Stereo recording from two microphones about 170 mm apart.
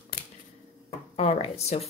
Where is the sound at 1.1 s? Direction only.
40° left (ahead or behind).